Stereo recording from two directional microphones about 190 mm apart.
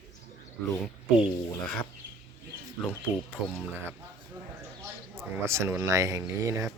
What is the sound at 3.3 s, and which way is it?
Speech, 5° right (ahead or behind).